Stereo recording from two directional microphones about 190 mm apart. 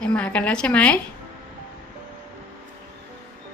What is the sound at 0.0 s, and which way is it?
Speech, 5° left (ahead or behind).